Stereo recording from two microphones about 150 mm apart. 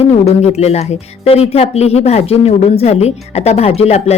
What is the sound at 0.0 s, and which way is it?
Speech, 45° left (ahead or behind).